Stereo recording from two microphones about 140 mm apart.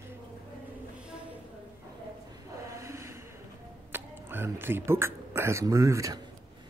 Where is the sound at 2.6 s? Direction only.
20° right (ahead or behind).